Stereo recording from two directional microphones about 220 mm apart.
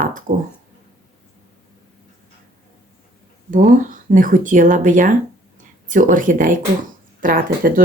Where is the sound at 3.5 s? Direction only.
40° right (ahead or behind).